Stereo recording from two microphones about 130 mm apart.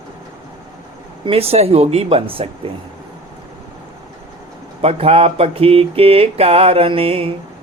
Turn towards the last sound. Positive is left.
turn(degrees=-45)  # may be behind; listen again after turning